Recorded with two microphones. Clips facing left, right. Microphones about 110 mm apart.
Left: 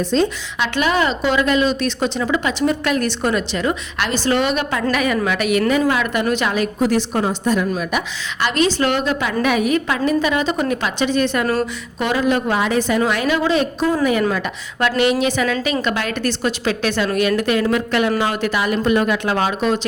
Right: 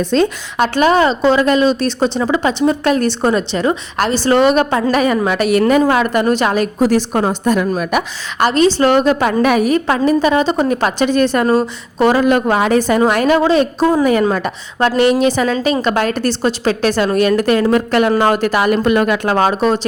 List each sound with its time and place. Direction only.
0.1 s a woman's voice: 60° right (ahead or behind)
0.8 s a woman's voice: 35° right (ahead or behind)
12.2 s a woman's voice: 55° right (ahead or behind)